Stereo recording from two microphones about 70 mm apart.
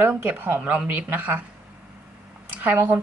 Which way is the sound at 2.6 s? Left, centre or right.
Right.